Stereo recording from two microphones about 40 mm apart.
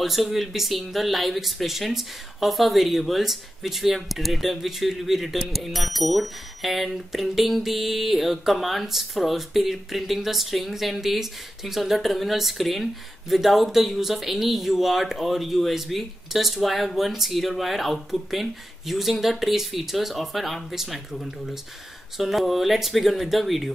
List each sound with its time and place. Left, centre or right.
0.0 s speech: centre